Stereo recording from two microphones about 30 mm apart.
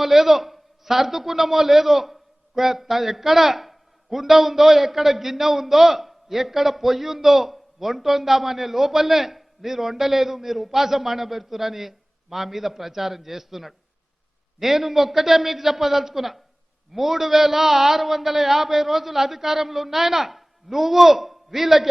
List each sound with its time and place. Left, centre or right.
0.0 s a woman's voice: centre